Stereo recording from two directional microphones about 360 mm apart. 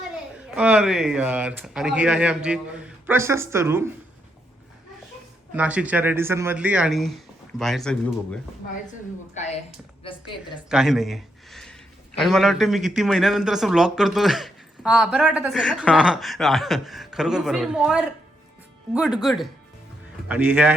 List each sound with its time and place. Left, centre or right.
0.5 s a man's voice: centre
5.5 s a man's voice: centre
8.9 s a woman's voice: centre
10.7 s a man's voice: centre